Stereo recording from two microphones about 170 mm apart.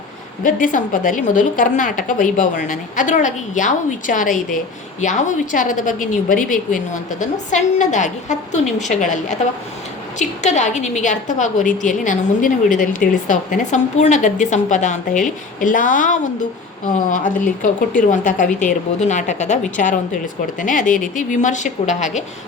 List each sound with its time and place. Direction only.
0.4 s a woman's voice: 50° left (ahead or behind)